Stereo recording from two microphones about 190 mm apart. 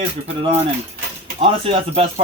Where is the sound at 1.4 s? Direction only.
30° right (ahead or behind).